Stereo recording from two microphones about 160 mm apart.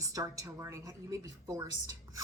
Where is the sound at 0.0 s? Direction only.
20° right (ahead or behind).